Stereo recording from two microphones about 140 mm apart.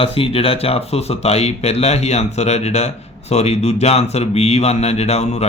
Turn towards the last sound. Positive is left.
turn(degrees=50)  # may be behind; listen again after turning